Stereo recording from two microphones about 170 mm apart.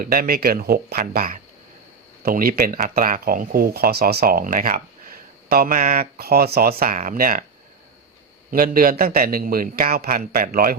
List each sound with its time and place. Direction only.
0.0 s speech: 60° right (ahead or behind)
8.4 s speech: 55° right (ahead or behind)